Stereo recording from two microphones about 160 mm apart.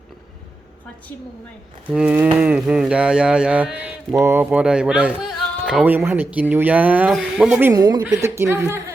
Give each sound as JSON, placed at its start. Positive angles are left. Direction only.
{"t": 1.9, "sound": "speech", "side_deg": -10}
{"t": 7.7, "sound": "a woman's voice", "side_deg": -25}